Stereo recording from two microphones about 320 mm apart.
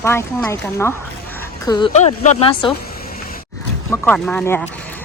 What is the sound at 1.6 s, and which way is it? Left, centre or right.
Speech, centre.